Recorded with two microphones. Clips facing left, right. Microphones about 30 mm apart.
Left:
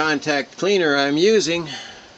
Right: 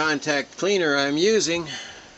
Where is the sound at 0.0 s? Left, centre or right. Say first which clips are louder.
Left 3 dB; centre.